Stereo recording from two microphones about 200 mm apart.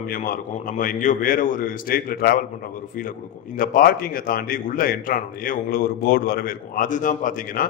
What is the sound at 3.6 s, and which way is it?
Speech, 45° left (ahead or behind).